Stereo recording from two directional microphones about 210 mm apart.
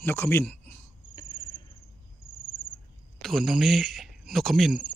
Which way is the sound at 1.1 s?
25° left (ahead or behind).